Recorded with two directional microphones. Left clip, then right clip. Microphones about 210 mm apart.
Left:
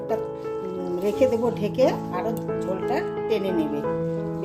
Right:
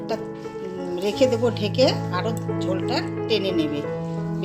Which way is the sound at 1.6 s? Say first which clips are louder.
Right 1 dB; 30° left (ahead or behind).